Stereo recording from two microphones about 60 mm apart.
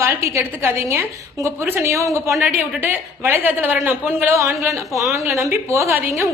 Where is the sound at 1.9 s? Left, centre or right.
Right.